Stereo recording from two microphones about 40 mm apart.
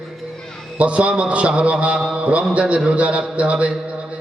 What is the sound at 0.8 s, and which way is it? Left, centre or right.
A man's voice, right.